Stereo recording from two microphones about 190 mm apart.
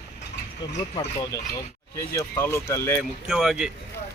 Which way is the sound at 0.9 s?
20° left (ahead or behind).